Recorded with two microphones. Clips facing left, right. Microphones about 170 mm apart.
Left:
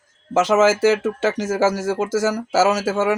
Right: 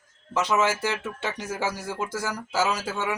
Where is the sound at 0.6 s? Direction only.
90° left.